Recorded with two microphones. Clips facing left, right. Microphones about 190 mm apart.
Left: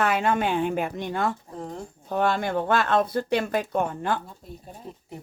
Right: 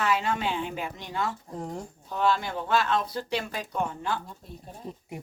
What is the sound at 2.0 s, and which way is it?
Speech, 55° left (ahead or behind).